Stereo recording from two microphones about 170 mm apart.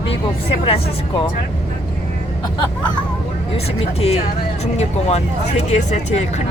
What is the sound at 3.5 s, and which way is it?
Speech, 35° left (ahead or behind).